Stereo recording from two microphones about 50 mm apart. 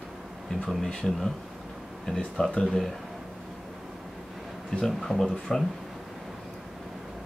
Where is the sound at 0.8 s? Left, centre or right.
Centre.